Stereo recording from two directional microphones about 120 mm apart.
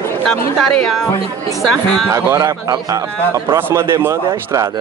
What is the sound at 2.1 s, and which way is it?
A man's voice, 25° right (ahead or behind).